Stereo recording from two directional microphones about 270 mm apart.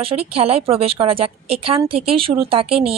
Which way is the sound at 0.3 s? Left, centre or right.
Right.